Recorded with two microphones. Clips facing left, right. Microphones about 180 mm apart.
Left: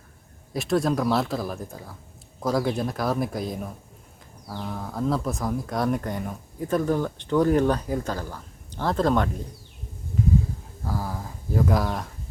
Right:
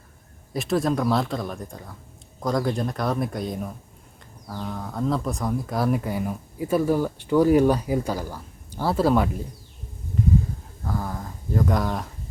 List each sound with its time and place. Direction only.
0.5 s speech: centre (ahead or behind)
4.6 s speech: centre (ahead or behind)
10.8 s a sound: 5° left (ahead or behind)